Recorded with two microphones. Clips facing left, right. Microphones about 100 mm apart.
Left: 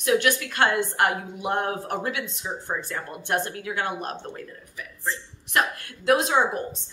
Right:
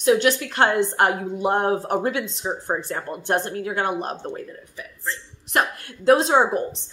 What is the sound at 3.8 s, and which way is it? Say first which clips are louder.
Speech: right 3 dB; 20° right (ahead or behind).